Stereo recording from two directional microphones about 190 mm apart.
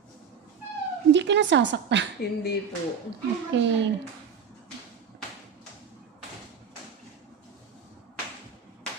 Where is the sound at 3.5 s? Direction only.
70° right (ahead or behind).